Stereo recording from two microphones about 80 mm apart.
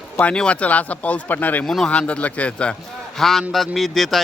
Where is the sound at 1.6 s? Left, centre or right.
Centre.